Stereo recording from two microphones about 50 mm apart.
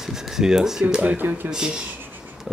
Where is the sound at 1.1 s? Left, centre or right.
Right.